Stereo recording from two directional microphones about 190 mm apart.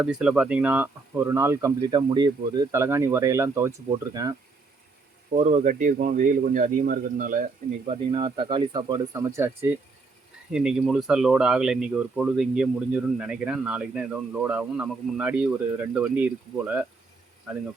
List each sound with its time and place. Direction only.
0.0 s speech: 5° right (ahead or behind)
5.3 s speech: 35° right (ahead or behind)
7.9 s speech: 25° right (ahead or behind); by 16.8 s 10° right (ahead or behind)